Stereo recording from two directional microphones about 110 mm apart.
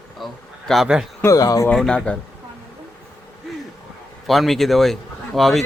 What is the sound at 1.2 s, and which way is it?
Speech, 30° left (ahead or behind).